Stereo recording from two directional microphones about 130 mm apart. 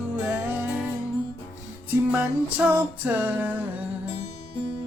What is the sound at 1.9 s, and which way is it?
Music, 10° right (ahead or behind).